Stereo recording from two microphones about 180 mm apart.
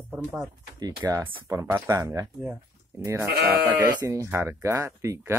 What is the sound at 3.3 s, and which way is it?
Speech, 60° right (ahead or behind).